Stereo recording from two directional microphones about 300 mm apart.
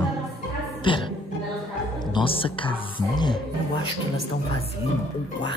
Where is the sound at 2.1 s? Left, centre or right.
Centre.